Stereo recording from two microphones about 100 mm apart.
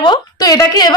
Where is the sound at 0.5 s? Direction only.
35° left (ahead or behind).